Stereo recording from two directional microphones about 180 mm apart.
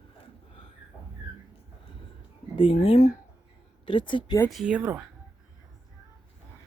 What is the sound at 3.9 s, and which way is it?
Speech, 25° left (ahead or behind).